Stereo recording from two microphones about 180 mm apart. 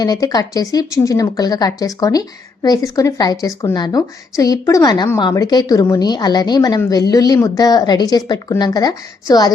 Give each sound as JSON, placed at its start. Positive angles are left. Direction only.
{"t": 0.0, "sound": "speech", "side_deg": 20}